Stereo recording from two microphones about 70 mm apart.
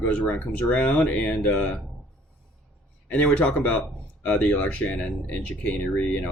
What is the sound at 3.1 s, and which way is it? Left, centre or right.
Speech, centre.